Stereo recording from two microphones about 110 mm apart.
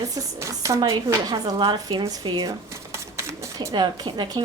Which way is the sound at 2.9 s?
25° right (ahead or behind).